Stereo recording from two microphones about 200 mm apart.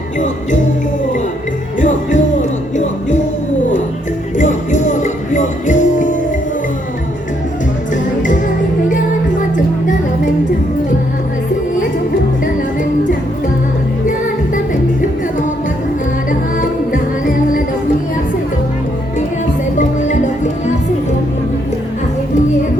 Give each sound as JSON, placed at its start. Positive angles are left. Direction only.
{"t": 1.8, "sound": "music", "side_deg": 40}
{"t": 4.4, "sound": "music", "side_deg": 40}
{"t": 16.6, "sound": "music", "side_deg": 45}